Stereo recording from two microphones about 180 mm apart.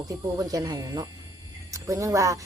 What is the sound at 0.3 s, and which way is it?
Speech, 20° right (ahead or behind).